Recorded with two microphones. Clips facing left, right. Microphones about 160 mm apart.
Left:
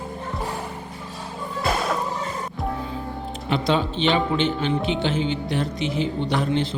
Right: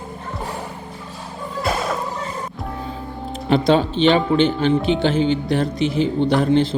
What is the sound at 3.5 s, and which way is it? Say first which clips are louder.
A woman's voice: right 6 dB; 35° right (ahead or behind).